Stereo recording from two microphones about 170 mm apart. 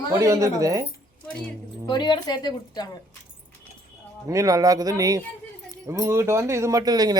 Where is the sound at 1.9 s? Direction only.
25° left (ahead or behind).